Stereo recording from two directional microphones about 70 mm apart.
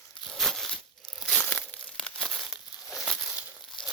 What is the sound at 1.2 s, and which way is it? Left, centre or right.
Crumpling, left.